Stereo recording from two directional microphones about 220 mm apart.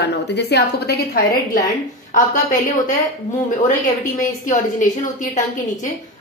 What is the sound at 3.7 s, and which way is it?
A woman's voice, 35° left (ahead or behind).